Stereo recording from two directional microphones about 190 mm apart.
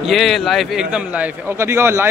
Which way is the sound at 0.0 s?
Centre (ahead or behind).